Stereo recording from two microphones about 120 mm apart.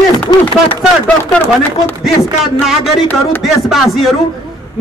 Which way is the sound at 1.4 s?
15° left (ahead or behind).